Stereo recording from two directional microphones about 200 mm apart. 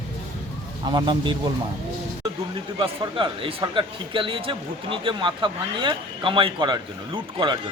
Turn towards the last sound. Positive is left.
turn(degrees=-25)  # may be behind; listen again after turning